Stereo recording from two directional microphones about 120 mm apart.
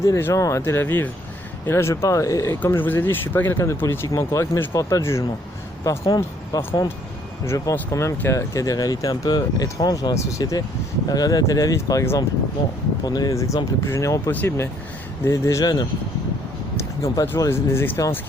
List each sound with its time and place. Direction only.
0.0 s speech: 25° left (ahead or behind)
2.6 s speech: 15° left (ahead or behind)